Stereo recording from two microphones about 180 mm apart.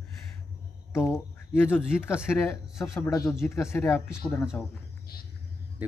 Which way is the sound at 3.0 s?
15° left (ahead or behind).